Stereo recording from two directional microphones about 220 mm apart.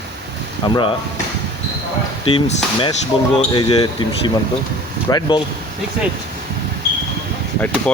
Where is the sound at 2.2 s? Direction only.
25° left (ahead or behind).